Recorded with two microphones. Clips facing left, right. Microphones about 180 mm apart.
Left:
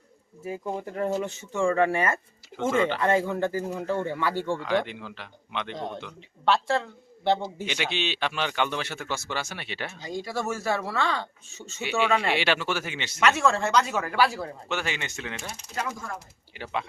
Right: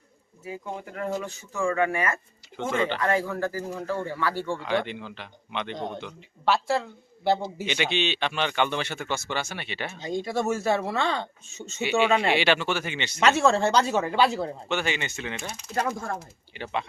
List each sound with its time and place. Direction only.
0.9 s speech: 25° left (ahead or behind)
4.6 s speech: centre (ahead or behind)
10.0 s speech: 20° right (ahead or behind)
11.8 s speech: centre (ahead or behind)
13.1 s speech: 25° right (ahead or behind)
14.7 s speech: centre (ahead or behind)
16.0 s speech: 55° right (ahead or behind)
16.6 s speech: centre (ahead or behind)